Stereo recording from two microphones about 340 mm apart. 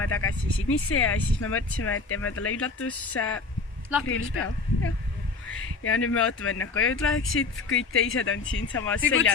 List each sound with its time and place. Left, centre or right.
0.0 s speech: left